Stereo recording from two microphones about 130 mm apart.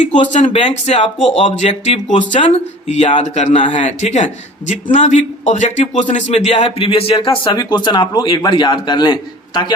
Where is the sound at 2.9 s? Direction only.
60° left (ahead or behind).